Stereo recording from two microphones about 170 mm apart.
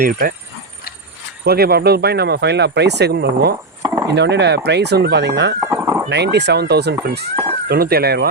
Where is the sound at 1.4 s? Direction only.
65° right (ahead or behind).